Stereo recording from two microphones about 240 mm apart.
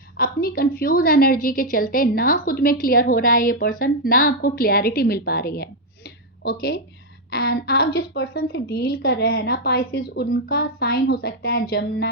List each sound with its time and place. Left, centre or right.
0.2 s a woman's voice: left